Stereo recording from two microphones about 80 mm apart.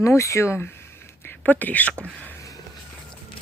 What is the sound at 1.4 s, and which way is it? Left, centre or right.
Speech, left.